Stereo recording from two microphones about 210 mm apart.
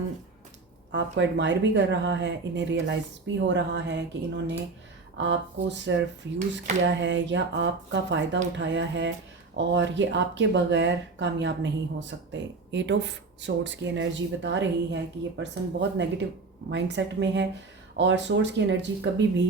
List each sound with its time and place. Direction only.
0.9 s speech: 60° right (ahead or behind)